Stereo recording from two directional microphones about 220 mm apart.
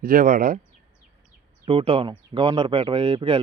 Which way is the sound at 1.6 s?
25° right (ahead or behind).